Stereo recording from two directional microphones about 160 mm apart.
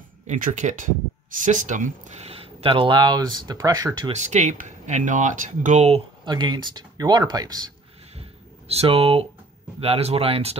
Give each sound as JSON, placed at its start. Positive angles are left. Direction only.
{"t": 0.3, "sound": "speech", "side_deg": -50}
{"t": 4.2, "sound": "speech", "side_deg": -45}
{"t": 6.2, "sound": "speech", "side_deg": -25}
{"t": 8.2, "sound": "a sound", "side_deg": -40}
{"t": 9.8, "sound": "speech", "side_deg": -40}